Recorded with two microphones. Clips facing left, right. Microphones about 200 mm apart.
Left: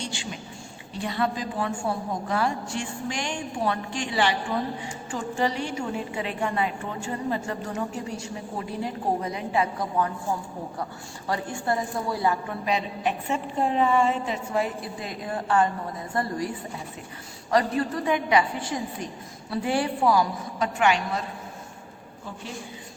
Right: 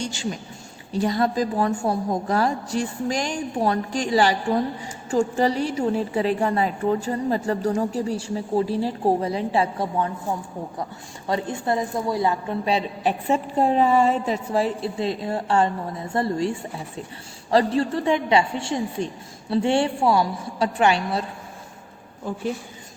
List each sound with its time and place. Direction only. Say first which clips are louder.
0.0 s a woman's voice: right 6 dB; 40° right (ahead or behind)
11.3 s a woman's voice: right 3 dB; 20° right (ahead or behind)